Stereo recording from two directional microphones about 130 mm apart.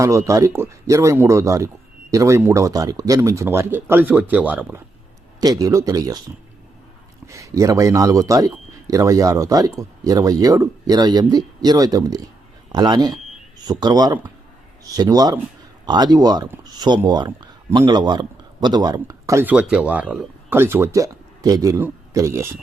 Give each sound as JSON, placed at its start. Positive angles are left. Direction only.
{"t": 0.0, "sound": "a man's voice", "side_deg": -25}
{"t": 5.4, "sound": "a man's voice", "side_deg": -30}
{"t": 7.3, "sound": "a man's voice", "side_deg": -25}
{"t": 19.5, "sound": "a man's voice", "side_deg": -5}